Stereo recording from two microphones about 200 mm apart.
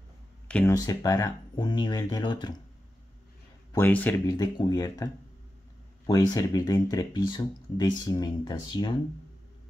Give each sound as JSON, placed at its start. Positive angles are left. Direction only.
{"t": 0.5, "sound": "speech", "side_deg": 5}
{"t": 0.7, "sound": "speech", "side_deg": 20}
{"t": 3.7, "sound": "speech", "side_deg": 10}